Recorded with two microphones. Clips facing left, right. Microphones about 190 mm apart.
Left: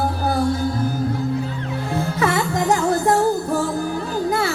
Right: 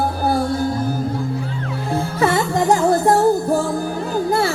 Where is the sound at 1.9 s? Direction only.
30° right (ahead or behind).